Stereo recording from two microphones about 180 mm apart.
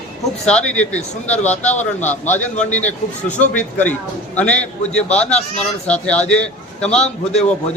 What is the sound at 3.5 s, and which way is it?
A man's voice, 10° left (ahead or behind).